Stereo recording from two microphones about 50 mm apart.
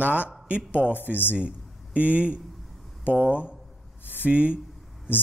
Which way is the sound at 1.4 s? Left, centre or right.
Right.